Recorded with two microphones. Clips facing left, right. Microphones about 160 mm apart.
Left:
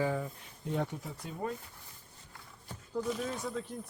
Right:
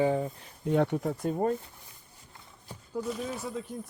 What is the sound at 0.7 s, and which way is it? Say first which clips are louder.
Speech: right 9 dB; 70° right (ahead or behind).